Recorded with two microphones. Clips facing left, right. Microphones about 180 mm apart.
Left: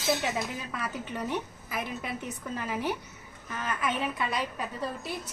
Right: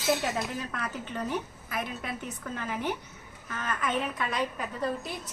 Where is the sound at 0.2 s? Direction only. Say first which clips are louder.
Right 1 dB; 5° left (ahead or behind).